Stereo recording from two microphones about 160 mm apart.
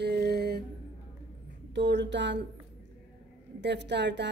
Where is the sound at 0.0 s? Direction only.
80° right.